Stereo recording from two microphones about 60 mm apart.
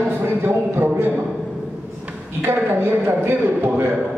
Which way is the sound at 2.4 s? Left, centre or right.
Right.